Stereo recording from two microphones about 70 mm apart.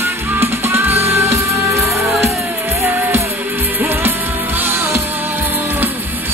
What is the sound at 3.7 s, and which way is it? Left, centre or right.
Music, right.